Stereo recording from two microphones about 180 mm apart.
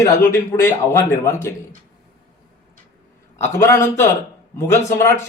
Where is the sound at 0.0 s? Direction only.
15° left (ahead or behind).